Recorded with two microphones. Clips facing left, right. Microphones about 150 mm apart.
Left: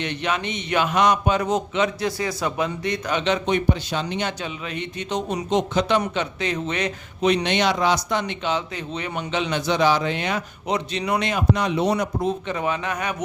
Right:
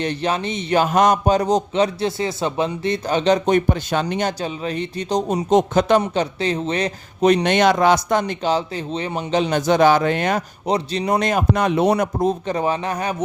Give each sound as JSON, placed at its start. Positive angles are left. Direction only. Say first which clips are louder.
{"t": 0.0, "sound": "a man's voice", "louder": "right 4 dB", "side_deg": -35}
{"t": 6.0, "sound": "speech", "louder": "right 4 dB", "side_deg": -30}
{"t": 8.2, "sound": "a man's voice", "louder": "right 5 dB", "side_deg": -35}
{"t": 10.7, "sound": "speech", "louder": "right 4 dB", "side_deg": -35}
{"t": 12.5, "sound": "a man's voice", "louder": "right 4 dB", "side_deg": -35}